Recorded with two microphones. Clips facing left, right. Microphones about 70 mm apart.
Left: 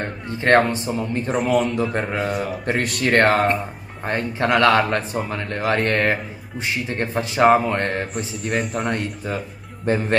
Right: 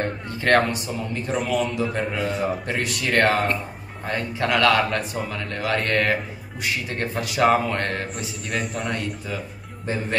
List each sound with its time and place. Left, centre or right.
0.3 s a man's voice: left
1.5 s speech: left
2.0 s a man's voice: left
8.8 s speech: left